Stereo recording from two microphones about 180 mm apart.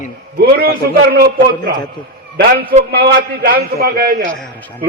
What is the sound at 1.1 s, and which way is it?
A man's voice, 55° right (ahead or behind).